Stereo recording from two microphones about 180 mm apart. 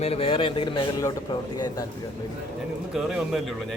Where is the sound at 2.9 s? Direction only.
Centre (ahead or behind).